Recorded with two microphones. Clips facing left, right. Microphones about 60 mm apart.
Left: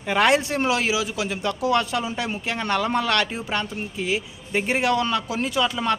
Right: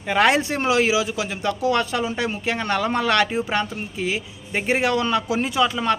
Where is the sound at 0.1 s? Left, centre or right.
Centre.